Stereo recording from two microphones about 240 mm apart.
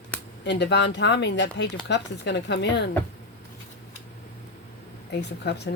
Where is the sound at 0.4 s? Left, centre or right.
Left.